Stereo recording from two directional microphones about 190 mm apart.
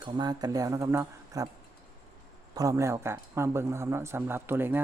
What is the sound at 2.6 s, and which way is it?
Speech, 15° right (ahead or behind).